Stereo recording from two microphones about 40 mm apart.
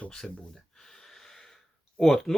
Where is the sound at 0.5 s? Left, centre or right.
Centre.